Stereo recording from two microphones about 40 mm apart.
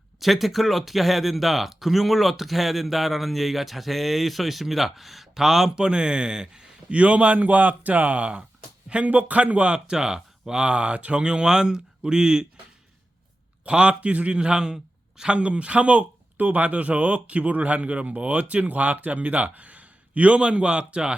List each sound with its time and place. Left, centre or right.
0.2 s speech: centre
6.9 s speech: right
9.9 s speech: centre
10.6 s speech: right
13.7 s speech: right
14.3 s speech: right